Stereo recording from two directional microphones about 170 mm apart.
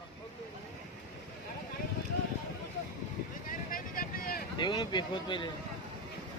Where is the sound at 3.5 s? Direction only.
55° left (ahead or behind).